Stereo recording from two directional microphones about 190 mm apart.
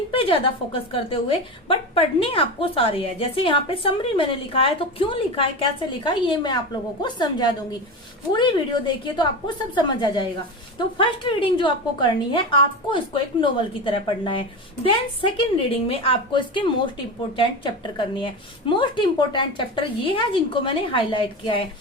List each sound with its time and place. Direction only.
0.1 s a woman's voice: 30° left (ahead or behind)
9.7 s a woman's voice: 25° left (ahead or behind)